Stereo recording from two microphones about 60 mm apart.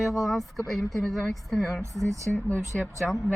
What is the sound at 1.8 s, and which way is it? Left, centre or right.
Speech, right.